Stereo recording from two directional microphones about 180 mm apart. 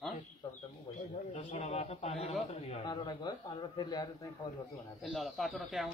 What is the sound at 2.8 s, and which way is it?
A man's voice, 25° left (ahead or behind).